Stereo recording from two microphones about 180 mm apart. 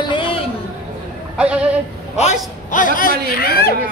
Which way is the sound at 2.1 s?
40° left (ahead or behind).